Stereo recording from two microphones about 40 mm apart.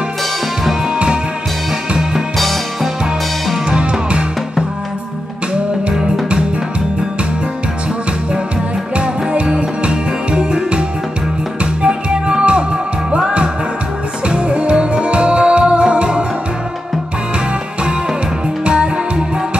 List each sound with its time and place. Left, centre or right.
0.9 s music: right
2.3 s music: centre
3.7 s music: right
8.9 s music: right
18.7 s music: right